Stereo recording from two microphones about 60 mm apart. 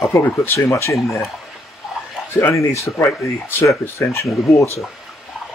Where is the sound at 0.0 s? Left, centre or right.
Left.